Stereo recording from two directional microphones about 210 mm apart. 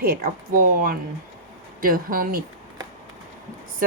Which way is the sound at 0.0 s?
45° right (ahead or behind).